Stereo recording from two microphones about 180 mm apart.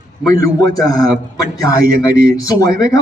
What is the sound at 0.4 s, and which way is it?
Speech, 20° left (ahead or behind).